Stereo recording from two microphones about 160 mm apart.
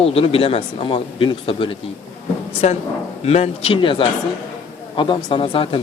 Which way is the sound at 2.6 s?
45° left (ahead or behind).